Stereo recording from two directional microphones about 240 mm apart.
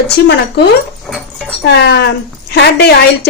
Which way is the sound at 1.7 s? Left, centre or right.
Left.